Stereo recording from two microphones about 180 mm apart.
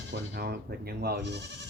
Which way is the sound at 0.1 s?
60° right (ahead or behind).